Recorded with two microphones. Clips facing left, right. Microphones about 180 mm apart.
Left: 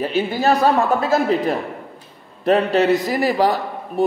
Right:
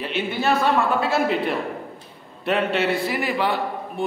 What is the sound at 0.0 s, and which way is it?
A man's voice, 40° left (ahead or behind).